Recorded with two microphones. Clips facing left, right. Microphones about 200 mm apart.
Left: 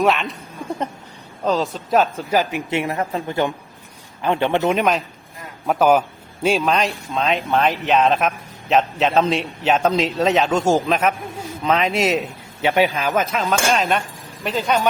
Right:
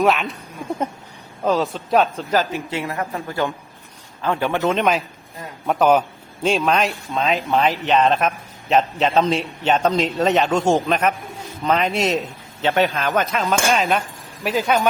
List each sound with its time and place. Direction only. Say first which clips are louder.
0.0 s a man's voice: even; centre (ahead or behind)
1.5 s a man's voice: right 1 dB; centre (ahead or behind)
2.3 s speech: left 3 dB; 15° left (ahead or behind)
5.6 s a man's voice: even; 5° left (ahead or behind)
12.6 s speech: left 1 dB; 10° left (ahead or behind)
13.1 s a man's voice: even; centre (ahead or behind)